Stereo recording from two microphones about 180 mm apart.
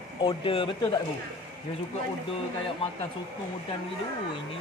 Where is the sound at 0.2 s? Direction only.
30° left (ahead or behind).